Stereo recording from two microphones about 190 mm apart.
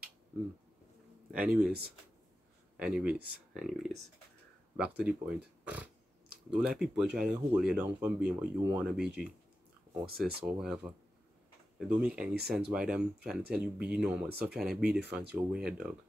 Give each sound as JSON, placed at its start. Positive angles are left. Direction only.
{"t": 1.7, "sound": "speech", "side_deg": -55}
{"t": 2.8, "sound": "speech", "side_deg": -5}
{"t": 10.0, "sound": "speech", "side_deg": -55}
{"t": 10.4, "sound": "speech", "side_deg": -5}
{"t": 11.9, "sound": "speech", "side_deg": -5}